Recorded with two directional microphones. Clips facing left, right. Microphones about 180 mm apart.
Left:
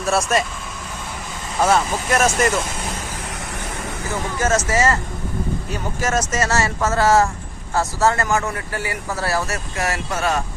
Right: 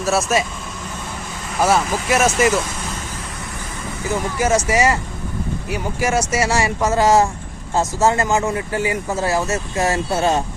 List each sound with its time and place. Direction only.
0.0 s speech: 5° right (ahead or behind)
1.5 s speech: 5° right (ahead or behind)
4.1 s speech: 10° right (ahead or behind)